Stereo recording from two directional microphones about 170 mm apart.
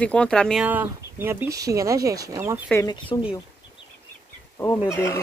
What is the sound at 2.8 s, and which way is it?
Speech, 25° left (ahead or behind).